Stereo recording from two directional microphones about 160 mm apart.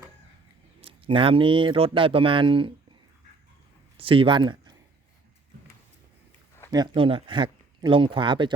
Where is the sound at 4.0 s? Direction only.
35° right (ahead or behind).